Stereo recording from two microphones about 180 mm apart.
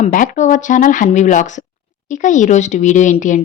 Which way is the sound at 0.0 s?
45° left (ahead or behind).